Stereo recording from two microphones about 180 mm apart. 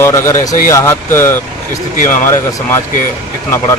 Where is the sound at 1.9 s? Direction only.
45° left (ahead or behind).